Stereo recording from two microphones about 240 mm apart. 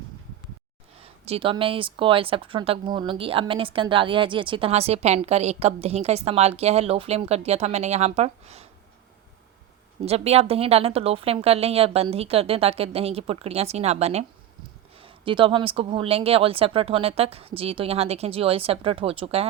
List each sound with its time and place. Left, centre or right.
1.0 s speech: right
10.1 s speech: right